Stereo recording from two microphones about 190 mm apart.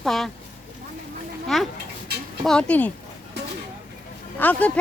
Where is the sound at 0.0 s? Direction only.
Centre (ahead or behind).